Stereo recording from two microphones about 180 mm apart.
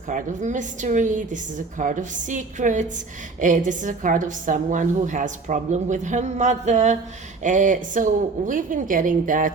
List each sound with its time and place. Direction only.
0.1 s a woman's voice: 45° right (ahead or behind)